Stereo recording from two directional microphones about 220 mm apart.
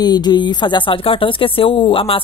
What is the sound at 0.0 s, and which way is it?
Speech, 20° left (ahead or behind).